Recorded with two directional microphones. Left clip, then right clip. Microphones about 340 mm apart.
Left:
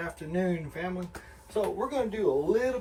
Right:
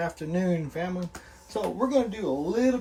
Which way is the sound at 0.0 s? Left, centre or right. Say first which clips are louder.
Right 2 dB; centre.